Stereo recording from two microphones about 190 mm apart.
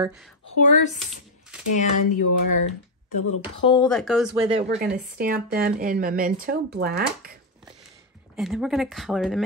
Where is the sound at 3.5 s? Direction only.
25° left (ahead or behind).